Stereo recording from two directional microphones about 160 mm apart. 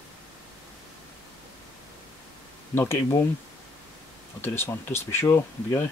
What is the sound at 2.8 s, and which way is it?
Speech, 15° left (ahead or behind).